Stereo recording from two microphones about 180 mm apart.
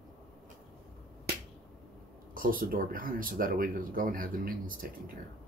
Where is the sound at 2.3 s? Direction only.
50° right (ahead or behind).